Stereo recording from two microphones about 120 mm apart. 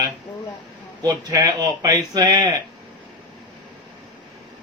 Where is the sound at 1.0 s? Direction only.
30° right (ahead or behind).